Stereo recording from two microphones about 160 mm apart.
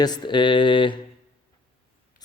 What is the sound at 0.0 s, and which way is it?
Mantra, 25° left (ahead or behind).